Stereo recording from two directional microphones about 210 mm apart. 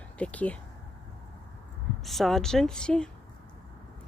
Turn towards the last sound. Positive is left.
turn(degrees=5)  # may be behind; listen again after turning